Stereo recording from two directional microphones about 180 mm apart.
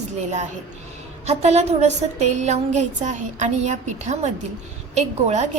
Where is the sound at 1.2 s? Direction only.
35° right (ahead or behind).